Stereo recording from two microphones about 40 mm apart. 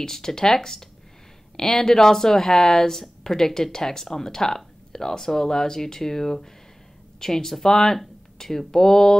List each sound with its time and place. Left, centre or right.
0.0 s speech: centre